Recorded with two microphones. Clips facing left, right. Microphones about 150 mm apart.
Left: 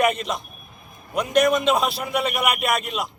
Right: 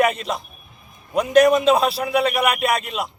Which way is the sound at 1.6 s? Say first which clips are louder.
Right 4 dB; 35° right (ahead or behind).